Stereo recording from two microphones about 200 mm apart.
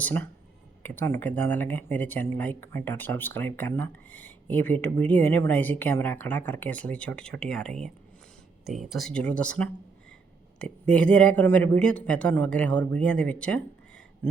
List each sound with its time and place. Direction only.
0.0 s speech: 5° left (ahead or behind)